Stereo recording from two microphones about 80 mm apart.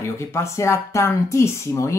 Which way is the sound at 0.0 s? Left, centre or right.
Left.